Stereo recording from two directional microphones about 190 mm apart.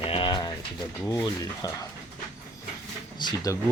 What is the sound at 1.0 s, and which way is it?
Speech, 15° left (ahead or behind).